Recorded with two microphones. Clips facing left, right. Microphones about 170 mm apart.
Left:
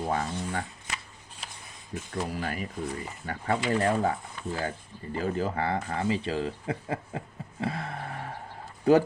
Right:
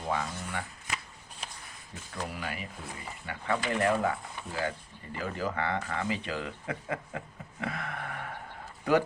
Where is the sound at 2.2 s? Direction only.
40° left (ahead or behind).